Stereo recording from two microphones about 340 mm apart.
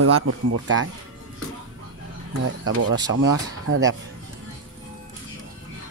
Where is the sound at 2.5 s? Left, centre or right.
Right.